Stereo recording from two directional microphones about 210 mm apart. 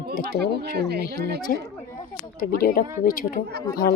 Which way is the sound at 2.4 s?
45° left (ahead or behind).